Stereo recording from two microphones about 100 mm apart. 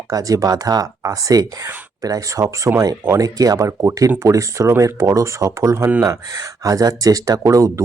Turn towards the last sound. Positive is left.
turn(degrees=-35)  # may be behind; listen again after turning